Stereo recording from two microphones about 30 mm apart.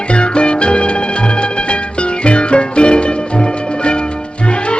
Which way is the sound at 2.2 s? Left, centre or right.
Left.